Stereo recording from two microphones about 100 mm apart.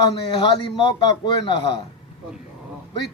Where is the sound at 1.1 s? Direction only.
50° left (ahead or behind).